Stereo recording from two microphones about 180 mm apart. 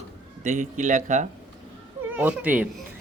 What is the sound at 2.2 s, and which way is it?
Speech, 10° right (ahead or behind).